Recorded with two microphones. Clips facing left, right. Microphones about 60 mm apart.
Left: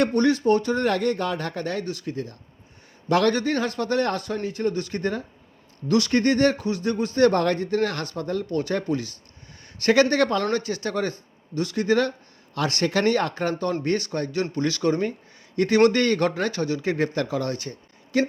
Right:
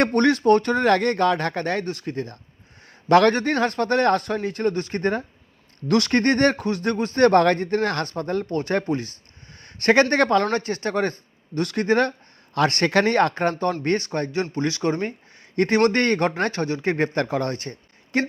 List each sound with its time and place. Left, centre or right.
0.0 s speech: right
8.1 s speech: right
13.8 s speech: right
15.5 s speech: right